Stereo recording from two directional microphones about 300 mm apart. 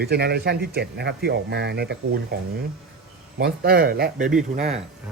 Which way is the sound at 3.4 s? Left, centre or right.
Right.